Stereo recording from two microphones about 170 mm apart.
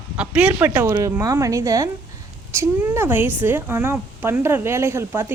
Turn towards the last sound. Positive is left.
turn(degrees=-15)  # may be behind; listen again after turning